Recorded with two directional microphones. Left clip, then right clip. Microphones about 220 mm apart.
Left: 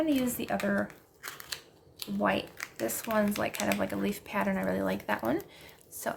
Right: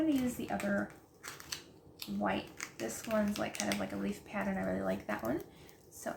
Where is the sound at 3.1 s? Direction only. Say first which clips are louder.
Left 5 dB; 45° left (ahead or behind).